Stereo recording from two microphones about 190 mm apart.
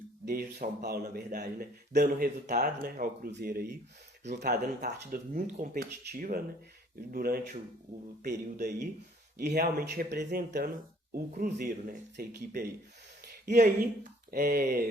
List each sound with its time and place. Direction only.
0.3 s a man's voice: 55° right (ahead or behind)
13.2 s a sound: 55° right (ahead or behind)
14.3 s speech: 50° right (ahead or behind)